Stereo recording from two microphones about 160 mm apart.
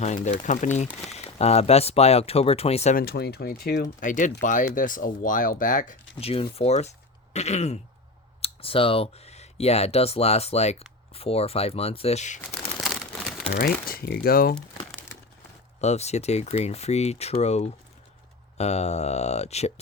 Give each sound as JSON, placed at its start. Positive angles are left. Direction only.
{"t": 0.0, "sound": "speech", "side_deg": 50}
{"t": 2.9, "sound": "speech", "side_deg": 75}
{"t": 4.0, "sound": "speech", "side_deg": 55}
{"t": 6.1, "sound": "speech", "side_deg": 35}
{"t": 12.7, "sound": "crumpling", "side_deg": 0}
{"t": 13.6, "sound": "speech", "side_deg": 70}
{"t": 15.8, "sound": "speech", "side_deg": 45}